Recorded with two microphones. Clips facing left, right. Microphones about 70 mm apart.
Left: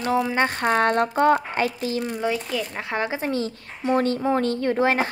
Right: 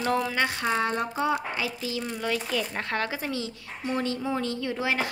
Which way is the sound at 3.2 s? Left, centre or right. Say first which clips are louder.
Left 6 dB; left.